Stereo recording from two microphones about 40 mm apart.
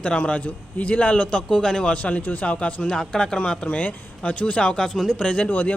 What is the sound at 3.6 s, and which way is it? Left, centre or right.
Speech, left.